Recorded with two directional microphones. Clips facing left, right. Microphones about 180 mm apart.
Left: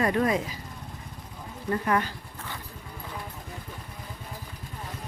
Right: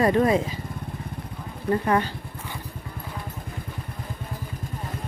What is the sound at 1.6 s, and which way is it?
Speech, 30° right (ahead or behind).